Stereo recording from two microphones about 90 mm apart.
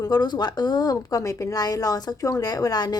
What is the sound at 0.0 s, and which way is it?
A woman's voice, 50° left (ahead or behind).